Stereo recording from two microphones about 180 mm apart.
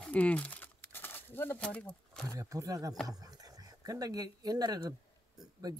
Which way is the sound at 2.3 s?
20° right (ahead or behind).